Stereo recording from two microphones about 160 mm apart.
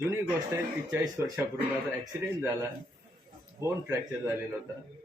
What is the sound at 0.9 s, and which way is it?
Speech, 10° right (ahead or behind).